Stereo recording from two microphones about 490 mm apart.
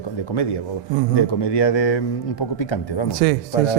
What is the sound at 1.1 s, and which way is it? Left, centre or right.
A man's voice, left.